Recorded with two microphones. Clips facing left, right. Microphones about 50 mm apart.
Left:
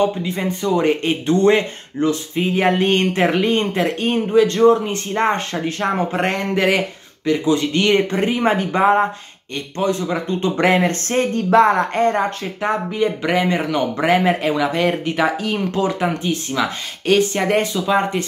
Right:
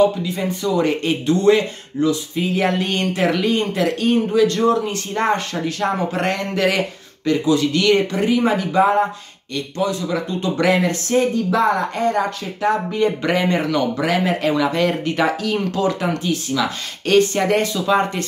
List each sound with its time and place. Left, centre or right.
0.0 s speech: left
2.5 s speech: left
12.9 s speech: centre
13.7 s speech: left
14.4 s speech: centre